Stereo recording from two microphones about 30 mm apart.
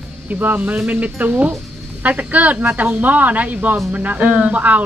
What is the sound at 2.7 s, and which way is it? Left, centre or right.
Speech, right.